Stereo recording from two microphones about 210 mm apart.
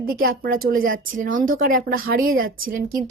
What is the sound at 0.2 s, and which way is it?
A woman's voice, 45° right (ahead or behind).